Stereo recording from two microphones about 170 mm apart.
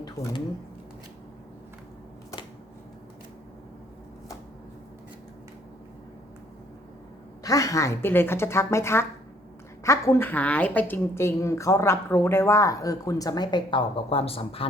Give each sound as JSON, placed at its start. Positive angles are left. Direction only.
{"t": 7.4, "sound": "a woman's voice", "side_deg": 20}